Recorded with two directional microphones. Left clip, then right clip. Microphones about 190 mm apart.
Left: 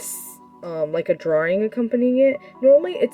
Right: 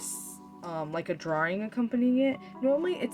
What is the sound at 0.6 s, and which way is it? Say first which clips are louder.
Speech: left 11 dB; 45° left (ahead or behind).